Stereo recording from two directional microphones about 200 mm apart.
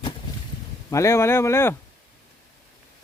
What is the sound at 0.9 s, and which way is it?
Speech, 15° left (ahead or behind).